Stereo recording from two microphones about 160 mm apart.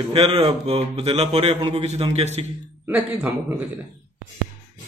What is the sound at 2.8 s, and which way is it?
Speech, 10° right (ahead or behind).